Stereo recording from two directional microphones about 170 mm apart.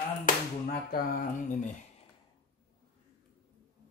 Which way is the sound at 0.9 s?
55° left (ahead or behind).